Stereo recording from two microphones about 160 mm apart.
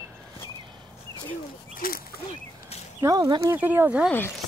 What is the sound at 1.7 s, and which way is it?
Speech, 65° left (ahead or behind).